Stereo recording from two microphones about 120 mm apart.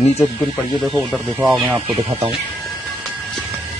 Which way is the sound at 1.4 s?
Centre (ahead or behind).